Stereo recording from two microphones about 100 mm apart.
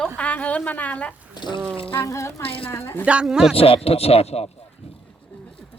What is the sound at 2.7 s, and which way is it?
Speech, 25° left (ahead or behind).